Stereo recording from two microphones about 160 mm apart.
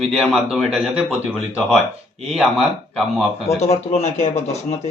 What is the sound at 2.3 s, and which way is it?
Speech, centre (ahead or behind).